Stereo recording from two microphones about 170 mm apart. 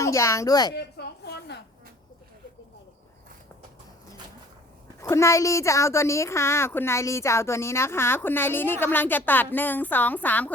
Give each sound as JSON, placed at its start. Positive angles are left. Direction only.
{"t": 0.0, "sound": "a woman's voice", "side_deg": 15}
{"t": 0.7, "sound": "a sound", "side_deg": 75}
{"t": 4.9, "sound": "a woman's voice", "side_deg": 15}